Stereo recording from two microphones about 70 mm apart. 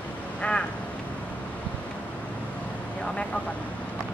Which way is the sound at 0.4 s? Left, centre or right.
Centre.